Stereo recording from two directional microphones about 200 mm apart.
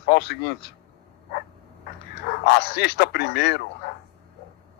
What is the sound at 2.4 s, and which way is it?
Speech, 55° left (ahead or behind).